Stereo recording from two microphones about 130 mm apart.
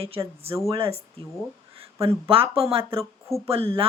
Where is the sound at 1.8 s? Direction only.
45° right (ahead or behind).